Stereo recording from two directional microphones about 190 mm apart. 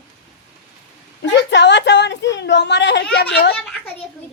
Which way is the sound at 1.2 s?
65° left (ahead or behind).